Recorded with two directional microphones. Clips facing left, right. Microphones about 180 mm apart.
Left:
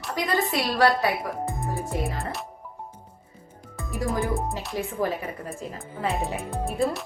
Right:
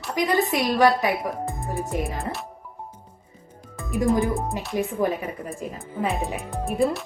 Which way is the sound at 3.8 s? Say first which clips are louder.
Right 6 dB; 20° right (ahead or behind).